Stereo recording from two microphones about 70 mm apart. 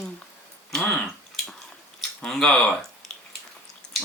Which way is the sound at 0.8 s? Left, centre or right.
Centre.